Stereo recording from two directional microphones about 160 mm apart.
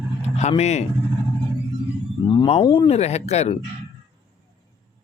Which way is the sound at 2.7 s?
35° left (ahead or behind).